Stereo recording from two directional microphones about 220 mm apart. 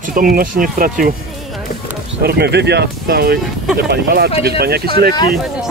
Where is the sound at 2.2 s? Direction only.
45° right (ahead or behind).